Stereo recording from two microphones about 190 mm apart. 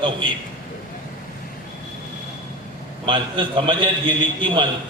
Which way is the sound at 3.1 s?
25° right (ahead or behind).